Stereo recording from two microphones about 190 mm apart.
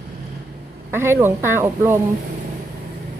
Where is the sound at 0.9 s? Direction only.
10° right (ahead or behind).